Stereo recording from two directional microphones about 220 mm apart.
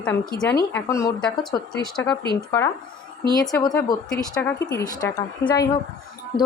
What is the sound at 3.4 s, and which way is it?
Speech, 15° left (ahead or behind).